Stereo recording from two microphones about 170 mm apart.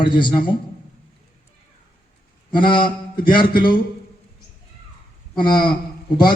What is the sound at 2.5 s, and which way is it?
A man's voice, 25° left (ahead or behind).